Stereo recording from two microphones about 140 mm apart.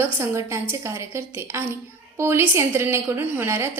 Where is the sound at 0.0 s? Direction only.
20° right (ahead or behind).